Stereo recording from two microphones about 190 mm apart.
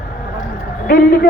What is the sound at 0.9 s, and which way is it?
Speech, 50° left (ahead or behind).